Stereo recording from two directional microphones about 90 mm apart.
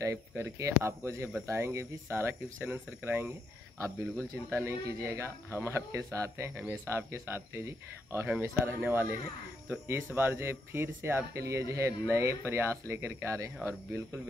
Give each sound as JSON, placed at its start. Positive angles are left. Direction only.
{"t": 0.0, "sound": "speech", "side_deg": -35}
{"t": 4.5, "sound": "speech", "side_deg": -30}